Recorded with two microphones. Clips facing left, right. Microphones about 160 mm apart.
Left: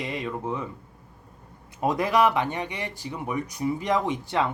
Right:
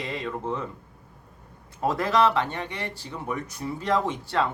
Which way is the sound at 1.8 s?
15° left (ahead or behind).